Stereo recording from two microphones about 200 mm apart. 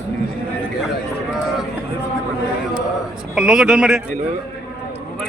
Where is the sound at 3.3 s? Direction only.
5° right (ahead or behind).